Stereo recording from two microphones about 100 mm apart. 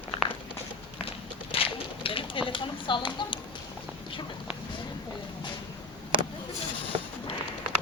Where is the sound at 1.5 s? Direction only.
65° left (ahead or behind); by 3.4 s 50° left (ahead or behind).